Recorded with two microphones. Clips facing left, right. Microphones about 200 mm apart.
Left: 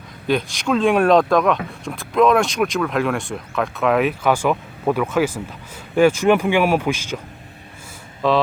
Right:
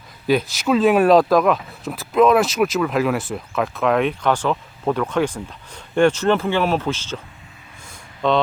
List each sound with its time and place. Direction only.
0.3 s speech: 5° right (ahead or behind); by 7.2 s 10° left (ahead or behind)
8.2 s speech: 5° left (ahead or behind)